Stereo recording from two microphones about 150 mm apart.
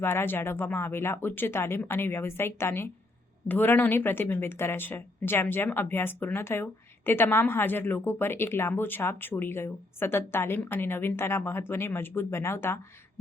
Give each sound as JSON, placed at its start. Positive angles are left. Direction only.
{"t": 0.0, "sound": "speech", "side_deg": 15}